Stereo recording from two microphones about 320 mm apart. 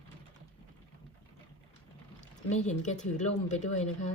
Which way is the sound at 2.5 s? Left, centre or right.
Left.